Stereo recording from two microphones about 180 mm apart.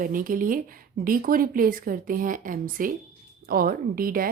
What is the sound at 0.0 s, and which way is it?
A woman's voice, 50° right (ahead or behind).